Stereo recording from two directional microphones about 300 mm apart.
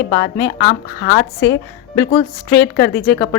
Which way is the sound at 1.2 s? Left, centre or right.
Left.